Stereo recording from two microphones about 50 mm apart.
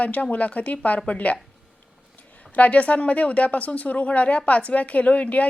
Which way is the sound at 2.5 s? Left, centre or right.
Left.